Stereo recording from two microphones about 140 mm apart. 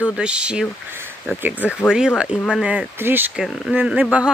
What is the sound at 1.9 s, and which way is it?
Speech, 5° right (ahead or behind).